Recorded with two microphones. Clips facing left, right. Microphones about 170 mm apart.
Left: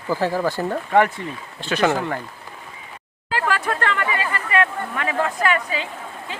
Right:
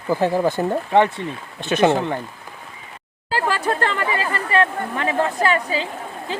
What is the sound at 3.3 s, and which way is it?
Speech, 35° right (ahead or behind).